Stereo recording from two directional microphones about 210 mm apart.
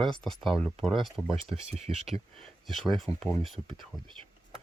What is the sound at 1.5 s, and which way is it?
Speech, 30° right (ahead or behind).